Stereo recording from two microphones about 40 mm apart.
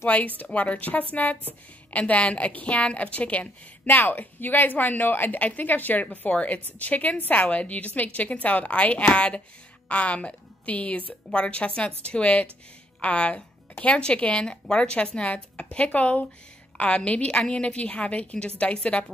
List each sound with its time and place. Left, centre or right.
0.1 s a woman's voice: left
3.8 s a woman's voice: left
6.0 s a woman's voice: left